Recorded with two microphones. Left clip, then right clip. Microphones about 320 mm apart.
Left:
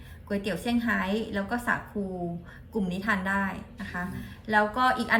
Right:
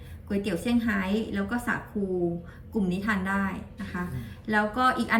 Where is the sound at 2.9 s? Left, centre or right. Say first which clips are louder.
Left 2 dB; centre.